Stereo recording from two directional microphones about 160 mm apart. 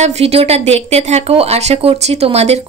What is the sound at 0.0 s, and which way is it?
Speech, 40° right (ahead or behind).